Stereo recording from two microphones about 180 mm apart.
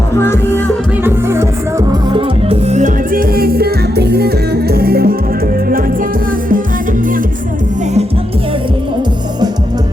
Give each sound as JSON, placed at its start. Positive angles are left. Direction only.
{"t": 0.1, "sound": "music", "side_deg": 15}
{"t": 1.0, "sound": "music", "side_deg": -15}
{"t": 1.9, "sound": "music", "side_deg": -25}